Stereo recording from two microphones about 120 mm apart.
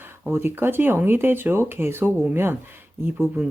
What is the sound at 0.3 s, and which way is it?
Speech, 20° right (ahead or behind).